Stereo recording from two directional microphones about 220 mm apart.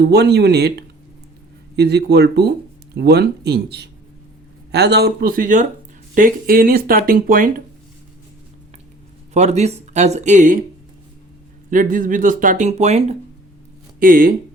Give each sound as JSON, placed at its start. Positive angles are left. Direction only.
{"t": 0.0, "sound": "speech", "side_deg": -50}
{"t": 9.3, "sound": "speech", "side_deg": -30}
{"t": 11.7, "sound": "speech", "side_deg": -35}